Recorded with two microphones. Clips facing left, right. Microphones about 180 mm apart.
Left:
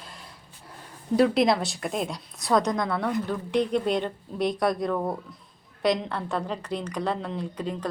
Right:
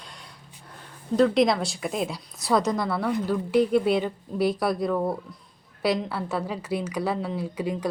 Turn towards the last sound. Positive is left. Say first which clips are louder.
# right 3 dB
turn(degrees=-10)  # may be behind; listen again after turning